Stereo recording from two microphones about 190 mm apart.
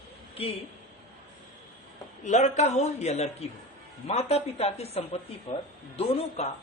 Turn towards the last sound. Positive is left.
turn(degrees=30)  # may be behind; listen again after turning